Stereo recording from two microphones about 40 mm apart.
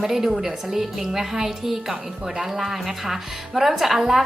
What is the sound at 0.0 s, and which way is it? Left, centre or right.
A woman's voice, centre.